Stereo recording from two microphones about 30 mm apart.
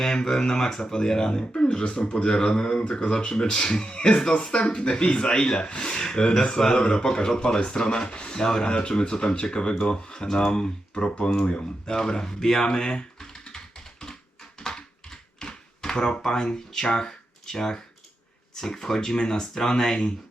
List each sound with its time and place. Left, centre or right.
0.3 s speech: centre
11.0 s speech: left
11.9 s speech: left
12.6 s speech: left
14.6 s a sound: left
16.2 s speech: left